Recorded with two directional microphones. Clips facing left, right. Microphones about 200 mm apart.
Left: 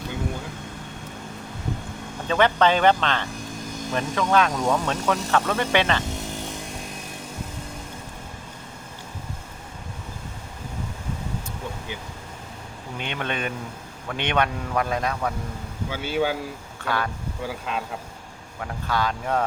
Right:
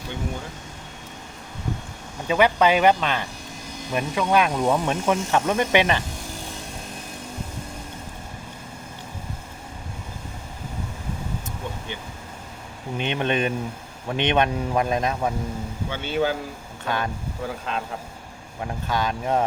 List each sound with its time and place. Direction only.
2.2 s speech: 10° right (ahead or behind)
13.0 s speech: 20° right (ahead or behind)
15.9 s speech: 5° left (ahead or behind)
16.8 s speech: 20° right (ahead or behind)
17.4 s speech: 5° left (ahead or behind)
18.6 s speech: 20° right (ahead or behind)